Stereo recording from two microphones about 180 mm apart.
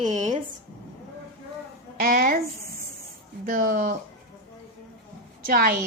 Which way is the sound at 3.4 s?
50° right (ahead or behind).